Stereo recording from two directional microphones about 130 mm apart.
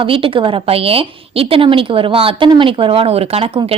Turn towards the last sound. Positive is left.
turn(degrees=-50)  # may be behind; listen again after turning